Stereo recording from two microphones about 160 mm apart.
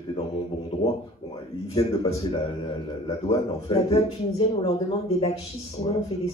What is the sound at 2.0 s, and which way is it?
Speech, 35° left (ahead or behind).